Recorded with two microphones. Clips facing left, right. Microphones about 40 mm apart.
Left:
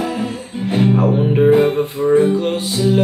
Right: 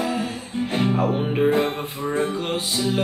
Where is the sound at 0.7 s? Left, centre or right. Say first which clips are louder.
Left 7 dB; centre.